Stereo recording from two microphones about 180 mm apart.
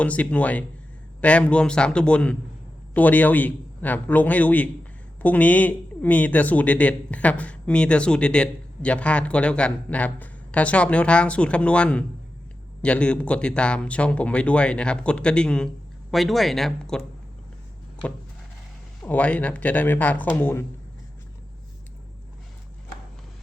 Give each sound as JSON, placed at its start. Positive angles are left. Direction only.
{"t": 0.0, "sound": "a man's voice", "side_deg": 10}
{"t": 19.0, "sound": "speech", "side_deg": 10}